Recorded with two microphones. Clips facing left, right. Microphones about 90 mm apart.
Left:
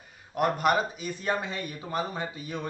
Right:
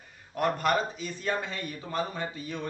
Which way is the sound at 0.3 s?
15° left (ahead or behind).